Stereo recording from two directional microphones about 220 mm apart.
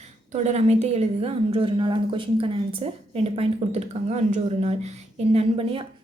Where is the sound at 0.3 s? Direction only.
30° right (ahead or behind).